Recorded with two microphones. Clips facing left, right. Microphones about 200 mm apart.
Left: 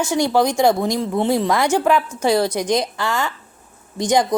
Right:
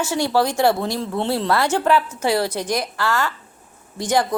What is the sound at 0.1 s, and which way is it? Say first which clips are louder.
Speech: left 3 dB; 15° left (ahead or behind).